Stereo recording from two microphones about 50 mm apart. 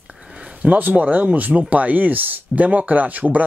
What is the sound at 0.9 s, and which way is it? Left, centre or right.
Speech, right.